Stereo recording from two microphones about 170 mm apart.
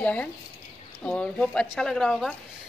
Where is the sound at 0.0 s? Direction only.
10° left (ahead or behind).